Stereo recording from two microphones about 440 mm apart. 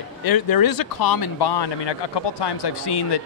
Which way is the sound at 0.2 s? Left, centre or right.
Left.